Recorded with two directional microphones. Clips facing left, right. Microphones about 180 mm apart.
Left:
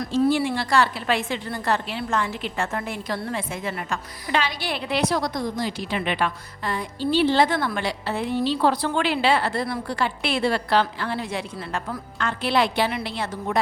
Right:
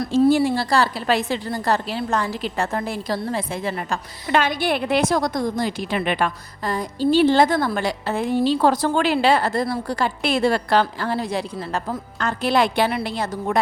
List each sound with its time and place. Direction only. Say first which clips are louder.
0.1 s a woman's voice: right 4 dB; 45° right (ahead or behind)
4.3 s a woman's voice: right 6 dB; 50° right (ahead or behind)